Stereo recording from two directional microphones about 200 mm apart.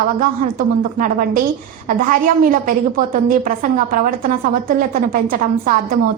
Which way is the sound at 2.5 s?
45° right (ahead or behind).